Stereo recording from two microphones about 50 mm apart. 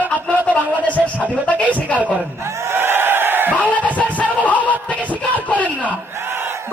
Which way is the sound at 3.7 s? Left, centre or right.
Left.